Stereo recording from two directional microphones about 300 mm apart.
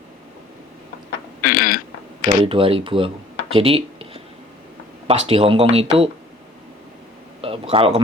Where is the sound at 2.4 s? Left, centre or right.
Centre.